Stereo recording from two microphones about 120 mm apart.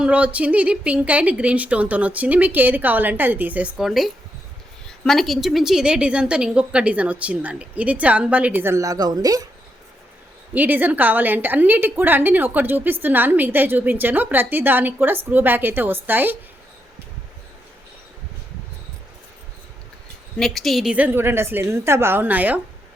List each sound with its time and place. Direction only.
0.0 s a woman's voice: 10° right (ahead or behind); by 9.5 s 30° right (ahead or behind)
10.5 s a woman's voice: 15° right (ahead or behind)
20.4 s a woman's voice: centre (ahead or behind)
20.9 s a woman's voice: 15° right (ahead or behind)